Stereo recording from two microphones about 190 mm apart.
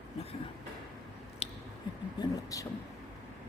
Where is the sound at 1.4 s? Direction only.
30° left (ahead or behind).